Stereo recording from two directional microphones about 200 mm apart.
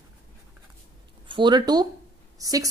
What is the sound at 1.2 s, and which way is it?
Speech, 25° right (ahead or behind).